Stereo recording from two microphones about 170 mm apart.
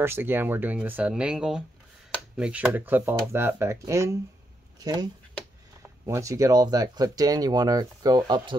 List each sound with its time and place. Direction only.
0.0 s speech: 15° right (ahead or behind)